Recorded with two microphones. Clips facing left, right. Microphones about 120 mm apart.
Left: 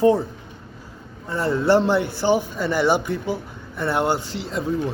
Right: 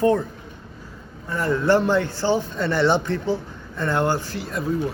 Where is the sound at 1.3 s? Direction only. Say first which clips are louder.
Left 1 dB; 15° left (ahead or behind).